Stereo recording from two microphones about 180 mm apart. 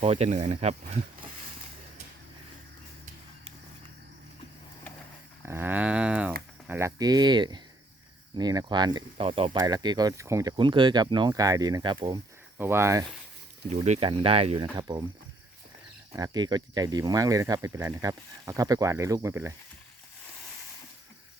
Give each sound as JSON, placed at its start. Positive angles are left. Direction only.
{"t": 0.0, "sound": "speech", "side_deg": -35}
{"t": 5.5, "sound": "a sound", "side_deg": -10}
{"t": 6.7, "sound": "speech", "side_deg": -15}
{"t": 12.5, "sound": "speech", "side_deg": -15}
{"t": 13.8, "sound": "speech", "side_deg": -40}
{"t": 16.1, "sound": "speech", "side_deg": -20}